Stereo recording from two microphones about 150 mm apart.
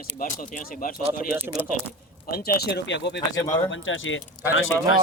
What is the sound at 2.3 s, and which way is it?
Speech, 80° left.